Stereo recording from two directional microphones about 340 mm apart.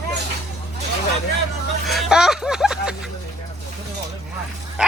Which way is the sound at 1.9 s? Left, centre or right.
Centre.